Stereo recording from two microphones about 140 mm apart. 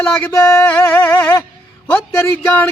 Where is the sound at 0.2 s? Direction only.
20° left (ahead or behind).